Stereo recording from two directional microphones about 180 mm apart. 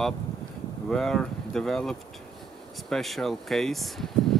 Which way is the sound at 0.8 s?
5° left (ahead or behind).